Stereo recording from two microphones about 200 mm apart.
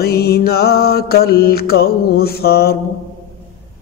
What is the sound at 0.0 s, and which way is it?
Mantra, 50° left (ahead or behind).